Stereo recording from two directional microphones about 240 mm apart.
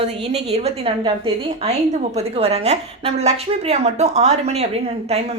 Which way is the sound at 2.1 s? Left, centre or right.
Right.